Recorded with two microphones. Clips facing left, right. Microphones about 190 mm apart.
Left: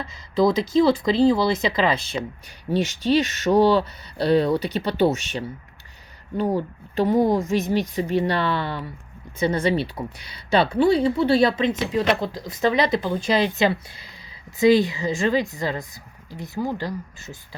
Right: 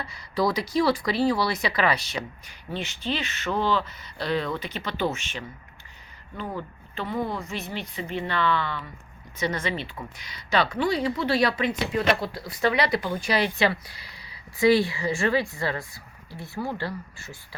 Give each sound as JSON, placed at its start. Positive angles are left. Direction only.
{"t": 0.1, "sound": "speech", "side_deg": 25}
{"t": 2.7, "sound": "speech", "side_deg": 45}